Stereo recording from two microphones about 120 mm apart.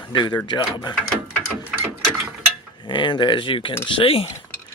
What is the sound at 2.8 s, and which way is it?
Speech, 40° left (ahead or behind).